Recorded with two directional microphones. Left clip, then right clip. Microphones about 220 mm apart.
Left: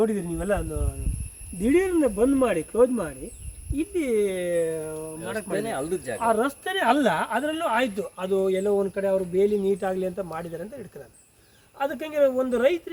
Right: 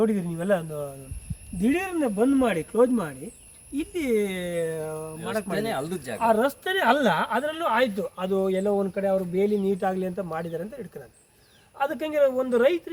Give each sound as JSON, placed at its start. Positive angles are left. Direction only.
{"t": 0.0, "sound": "speech", "side_deg": 0}
{"t": 0.4, "sound": "a woman's voice", "side_deg": -15}
{"t": 1.6, "sound": "a woman's voice", "side_deg": -45}
{"t": 11.8, "sound": "a woman's voice", "side_deg": -5}